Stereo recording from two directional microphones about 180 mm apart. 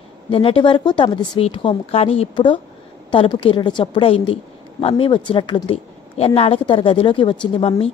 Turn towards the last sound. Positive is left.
turn(degrees=30)  # may be behind; listen again after turning